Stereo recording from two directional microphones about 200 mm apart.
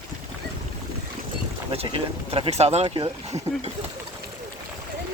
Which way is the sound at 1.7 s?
30° right (ahead or behind).